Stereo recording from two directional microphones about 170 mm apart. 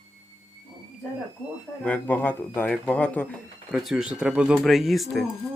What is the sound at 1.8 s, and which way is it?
Speech, 10° left (ahead or behind).